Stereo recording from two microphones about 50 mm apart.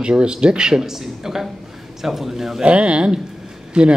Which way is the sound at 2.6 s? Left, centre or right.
Right.